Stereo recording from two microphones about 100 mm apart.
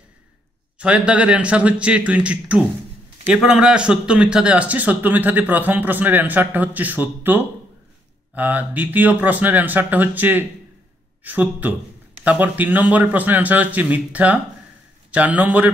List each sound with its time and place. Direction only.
0.7 s a man's voice: 10° right (ahead or behind)